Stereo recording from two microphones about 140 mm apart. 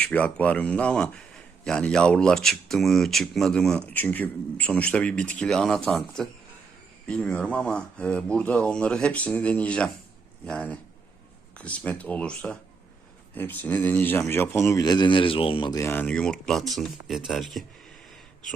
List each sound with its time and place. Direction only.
0.0 s speech: 10° left (ahead or behind); by 15.7 s 40° left (ahead or behind)
15.7 s speech: 15° left (ahead or behind); by 17.9 s centre (ahead or behind)